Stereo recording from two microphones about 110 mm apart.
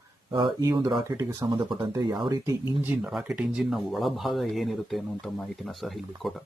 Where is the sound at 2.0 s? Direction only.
40° right (ahead or behind).